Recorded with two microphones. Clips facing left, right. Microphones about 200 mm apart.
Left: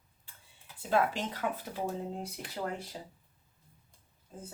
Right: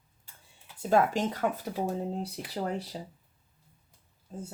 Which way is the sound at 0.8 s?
45° right (ahead or behind).